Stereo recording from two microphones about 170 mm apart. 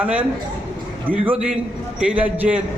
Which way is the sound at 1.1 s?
55° right (ahead or behind).